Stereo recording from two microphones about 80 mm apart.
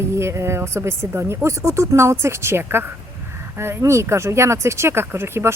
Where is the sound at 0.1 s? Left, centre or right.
Right.